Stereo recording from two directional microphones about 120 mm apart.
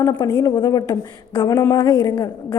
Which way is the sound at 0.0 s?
30° left (ahead or behind).